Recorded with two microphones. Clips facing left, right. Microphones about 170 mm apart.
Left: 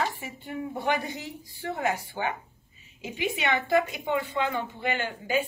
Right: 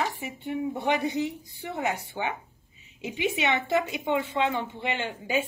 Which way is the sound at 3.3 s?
25° right (ahead or behind).